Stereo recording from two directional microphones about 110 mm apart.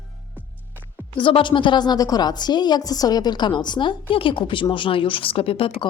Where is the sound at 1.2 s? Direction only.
50° left (ahead or behind).